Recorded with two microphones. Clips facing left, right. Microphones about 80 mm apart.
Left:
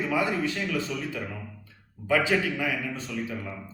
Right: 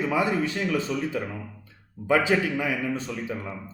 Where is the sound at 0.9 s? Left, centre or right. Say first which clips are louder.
Right 5 dB; right.